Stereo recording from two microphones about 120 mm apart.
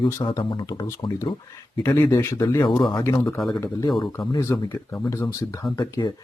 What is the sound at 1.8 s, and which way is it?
Speech, 20° left (ahead or behind).